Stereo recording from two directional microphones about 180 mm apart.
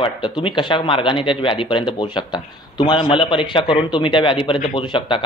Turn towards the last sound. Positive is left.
turn(degrees=25)  # may be behind; listen again after turning